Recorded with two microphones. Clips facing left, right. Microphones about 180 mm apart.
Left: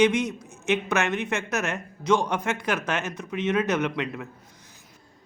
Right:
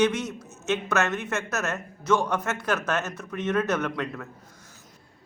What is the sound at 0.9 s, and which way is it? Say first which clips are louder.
A man's voice: left 1 dB; 15° left (ahead or behind).